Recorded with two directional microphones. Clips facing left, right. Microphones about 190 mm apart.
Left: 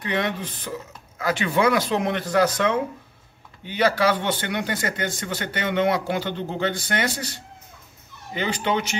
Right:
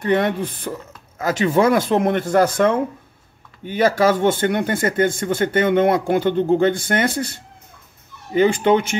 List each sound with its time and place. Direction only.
0.0 s speech: 50° right (ahead or behind)
1.2 s speech: 45° right (ahead or behind)